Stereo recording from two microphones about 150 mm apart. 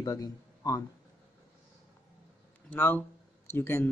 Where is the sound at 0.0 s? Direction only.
25° left (ahead or behind).